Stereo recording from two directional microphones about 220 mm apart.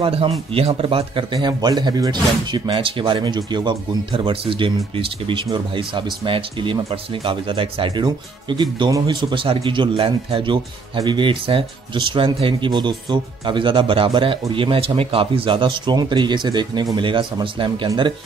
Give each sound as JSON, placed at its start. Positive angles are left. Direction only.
{"t": 0.0, "sound": "speech", "side_deg": -25}